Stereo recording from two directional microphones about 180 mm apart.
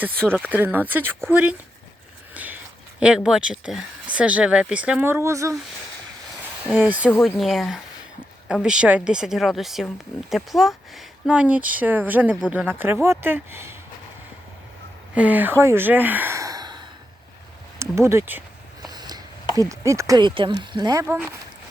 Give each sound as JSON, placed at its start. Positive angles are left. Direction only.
{"t": 0.4, "sound": "speech", "side_deg": -10}
{"t": 2.3, "sound": "a sound", "side_deg": -10}
{"t": 3.0, "sound": "speech", "side_deg": -5}
{"t": 6.7, "sound": "speech", "side_deg": -5}
{"t": 15.1, "sound": "speech", "side_deg": -10}
{"t": 18.8, "sound": "a sound", "side_deg": -20}
{"t": 19.5, "sound": "speech", "side_deg": -15}